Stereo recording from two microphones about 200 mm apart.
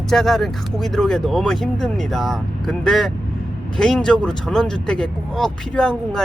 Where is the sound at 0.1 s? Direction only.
Centre (ahead or behind).